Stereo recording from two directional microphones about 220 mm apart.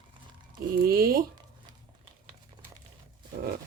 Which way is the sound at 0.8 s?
45° right (ahead or behind).